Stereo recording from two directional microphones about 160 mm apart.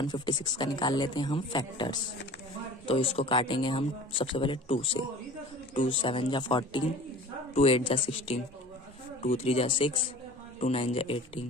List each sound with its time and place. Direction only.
0.0 s speech: 30° left (ahead or behind)